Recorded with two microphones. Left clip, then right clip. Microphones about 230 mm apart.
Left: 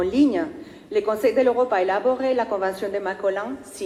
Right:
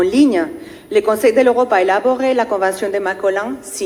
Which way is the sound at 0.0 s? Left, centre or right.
Right.